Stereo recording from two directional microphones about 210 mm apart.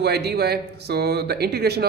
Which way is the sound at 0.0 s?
50° right (ahead or behind).